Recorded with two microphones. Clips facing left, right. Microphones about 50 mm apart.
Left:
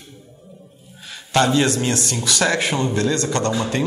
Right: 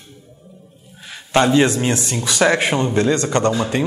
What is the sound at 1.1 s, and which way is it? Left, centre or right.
A man's voice, right.